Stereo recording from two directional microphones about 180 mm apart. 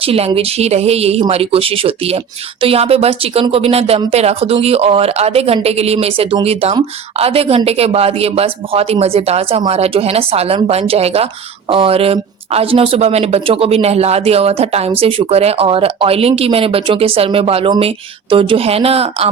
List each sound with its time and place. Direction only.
0.0 s speech: 35° right (ahead or behind)